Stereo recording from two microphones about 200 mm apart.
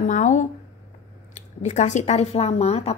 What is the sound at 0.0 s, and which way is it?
Speech, 40° left (ahead or behind).